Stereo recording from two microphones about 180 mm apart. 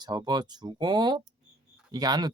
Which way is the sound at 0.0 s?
20° right (ahead or behind).